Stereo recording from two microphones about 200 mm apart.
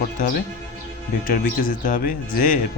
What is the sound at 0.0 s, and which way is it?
Speech, 45° left (ahead or behind).